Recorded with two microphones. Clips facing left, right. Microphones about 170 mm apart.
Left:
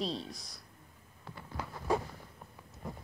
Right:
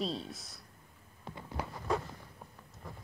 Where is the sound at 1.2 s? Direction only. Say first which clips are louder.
Right 2 dB; 20° right (ahead or behind).